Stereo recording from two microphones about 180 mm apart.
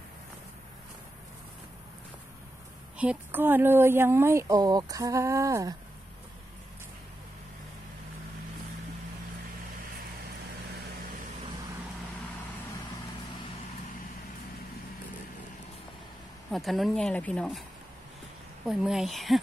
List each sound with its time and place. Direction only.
3.0 s speech: 10° right (ahead or behind)
16.5 s speech: centre (ahead or behind)
18.7 s speech: 5° right (ahead or behind)